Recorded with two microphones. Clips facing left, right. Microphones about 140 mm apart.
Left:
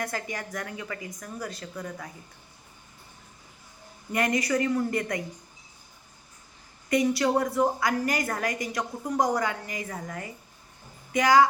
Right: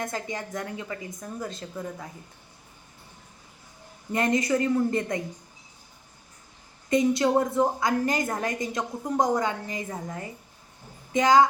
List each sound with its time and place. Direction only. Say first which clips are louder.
0.0 s a woman's voice: right 1 dB; 20° right (ahead or behind)
4.1 s a woman's voice: right 2 dB; 25° right (ahead or behind)
6.9 s a woman's voice: right 2 dB; 20° right (ahead or behind)